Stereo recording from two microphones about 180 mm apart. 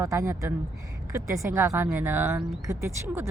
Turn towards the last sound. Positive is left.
turn(degrees=-15)  # may be behind; listen again after turning